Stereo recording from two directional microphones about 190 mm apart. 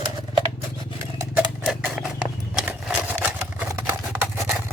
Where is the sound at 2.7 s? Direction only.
10° right (ahead or behind).